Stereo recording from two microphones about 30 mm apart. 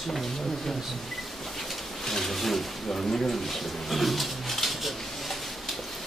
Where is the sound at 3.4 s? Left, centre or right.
Centre.